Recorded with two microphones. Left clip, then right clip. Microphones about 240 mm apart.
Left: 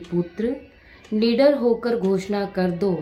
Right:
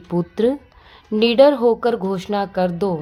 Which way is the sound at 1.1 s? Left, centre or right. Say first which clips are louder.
Right 5 dB; right.